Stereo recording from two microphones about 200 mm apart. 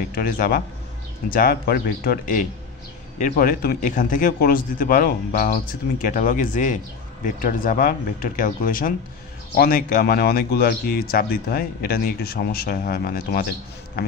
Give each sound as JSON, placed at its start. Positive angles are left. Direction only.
{"t": 0.1, "sound": "a man's voice", "side_deg": 50}